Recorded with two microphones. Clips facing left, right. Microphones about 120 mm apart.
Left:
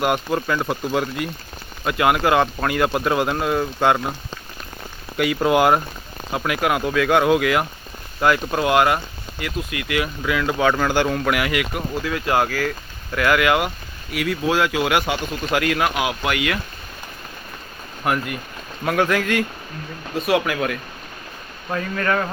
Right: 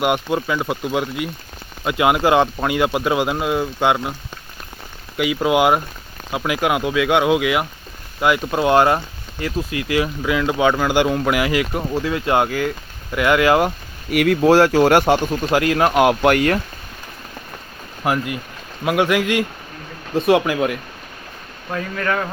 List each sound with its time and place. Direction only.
0.0 s speech: 10° right (ahead or behind)
1.8 s speech: 20° right (ahead or behind)
5.1 s speech: 5° right (ahead or behind)
8.6 s speech: 30° right (ahead or behind)
14.1 s speech: 60° right (ahead or behind)
14.5 s speech: 40° right (ahead or behind)
15.4 s speech: 25° right (ahead or behind)
16.0 s speech: 50° right (ahead or behind)
18.0 s speech: 20° right (ahead or behind)
21.7 s speech: centre (ahead or behind)